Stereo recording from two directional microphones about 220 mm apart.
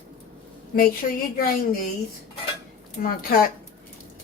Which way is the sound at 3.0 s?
40° left (ahead or behind).